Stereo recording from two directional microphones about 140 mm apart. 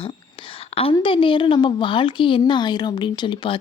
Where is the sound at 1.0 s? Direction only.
40° left (ahead or behind).